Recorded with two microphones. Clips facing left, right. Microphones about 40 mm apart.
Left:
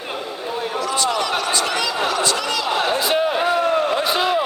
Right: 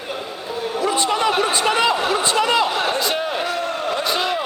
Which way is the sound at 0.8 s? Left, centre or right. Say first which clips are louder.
Right 3 dB; right.